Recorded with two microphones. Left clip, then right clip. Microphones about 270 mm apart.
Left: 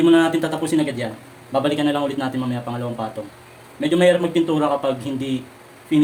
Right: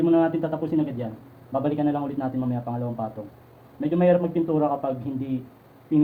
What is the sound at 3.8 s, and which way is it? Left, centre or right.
A man's voice, centre.